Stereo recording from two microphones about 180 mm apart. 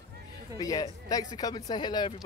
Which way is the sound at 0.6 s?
20° left (ahead or behind).